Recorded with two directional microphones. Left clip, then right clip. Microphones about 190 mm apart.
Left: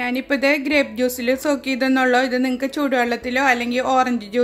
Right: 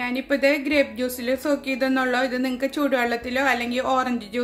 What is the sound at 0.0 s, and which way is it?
Speech, 30° left (ahead or behind).